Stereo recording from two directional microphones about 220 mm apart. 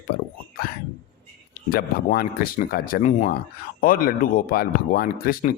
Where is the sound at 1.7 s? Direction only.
45° left (ahead or behind).